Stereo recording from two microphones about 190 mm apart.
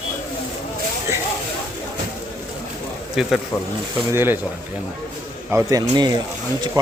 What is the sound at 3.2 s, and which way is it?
Speech, 5° right (ahead or behind).